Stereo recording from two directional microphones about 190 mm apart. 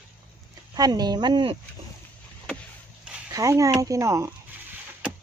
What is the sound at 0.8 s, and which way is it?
Speech, 20° right (ahead or behind).